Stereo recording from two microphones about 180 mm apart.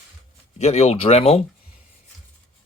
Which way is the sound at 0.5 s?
35° left (ahead or behind).